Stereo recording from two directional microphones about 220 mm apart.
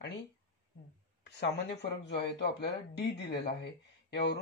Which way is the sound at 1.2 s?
50° left (ahead or behind).